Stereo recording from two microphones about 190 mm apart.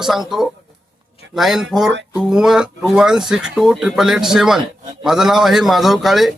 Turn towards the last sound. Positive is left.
turn(degrees=0)  # may be behind; listen again after turning